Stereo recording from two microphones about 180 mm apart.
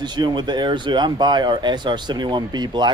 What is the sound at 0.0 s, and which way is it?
Speech, 25° right (ahead or behind).